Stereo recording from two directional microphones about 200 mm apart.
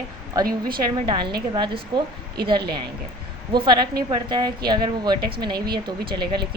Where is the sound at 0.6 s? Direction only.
20° right (ahead or behind).